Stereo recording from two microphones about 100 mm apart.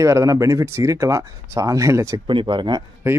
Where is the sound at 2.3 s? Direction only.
55° right (ahead or behind).